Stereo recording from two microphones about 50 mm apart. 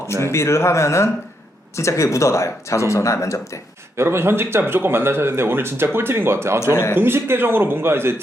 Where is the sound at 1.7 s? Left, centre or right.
Left.